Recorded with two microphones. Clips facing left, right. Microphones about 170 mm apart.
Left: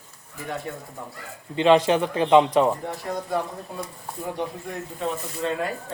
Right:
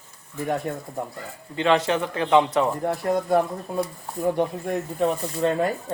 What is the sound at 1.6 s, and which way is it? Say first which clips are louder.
A man's voice: left 3 dB; 20° left (ahead or behind).